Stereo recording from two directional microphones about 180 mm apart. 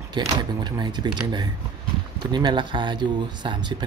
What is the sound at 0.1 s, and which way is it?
Speech, 25° right (ahead or behind).